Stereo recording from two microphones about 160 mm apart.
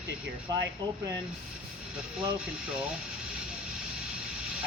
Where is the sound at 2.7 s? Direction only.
5° right (ahead or behind).